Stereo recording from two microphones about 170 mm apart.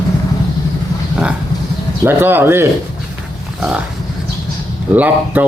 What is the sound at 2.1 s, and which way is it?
Speech, 15° right (ahead or behind).